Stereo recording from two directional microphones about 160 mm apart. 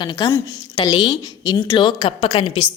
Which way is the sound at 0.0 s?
30° left (ahead or behind).